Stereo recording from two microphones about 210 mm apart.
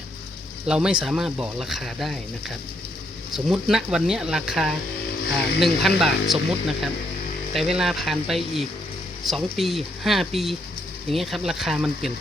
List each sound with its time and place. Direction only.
0.7 s speech: 5° right (ahead or behind)
3.3 s speech: centre (ahead or behind)